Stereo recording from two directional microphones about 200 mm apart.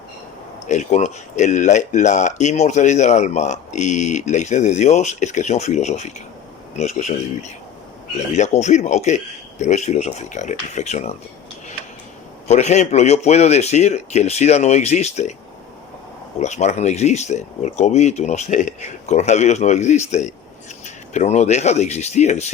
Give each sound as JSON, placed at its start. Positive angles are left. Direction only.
{"t": 0.7, "sound": "speech", "side_deg": 35}
{"t": 12.5, "sound": "speech", "side_deg": 35}
{"t": 16.4, "sound": "speech", "side_deg": 35}